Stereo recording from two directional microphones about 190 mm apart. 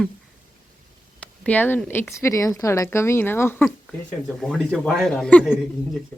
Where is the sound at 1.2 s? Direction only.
10° left (ahead or behind).